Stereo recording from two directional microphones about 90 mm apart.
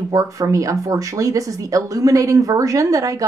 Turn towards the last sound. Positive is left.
turn(degrees=-40)  # may be behind; listen again after turning